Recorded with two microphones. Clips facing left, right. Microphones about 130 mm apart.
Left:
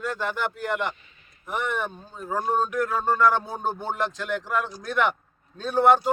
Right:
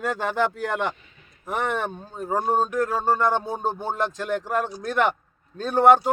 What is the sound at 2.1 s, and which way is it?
Speech, 45° right (ahead or behind).